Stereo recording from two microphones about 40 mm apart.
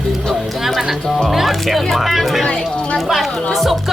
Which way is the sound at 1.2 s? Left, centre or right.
Centre.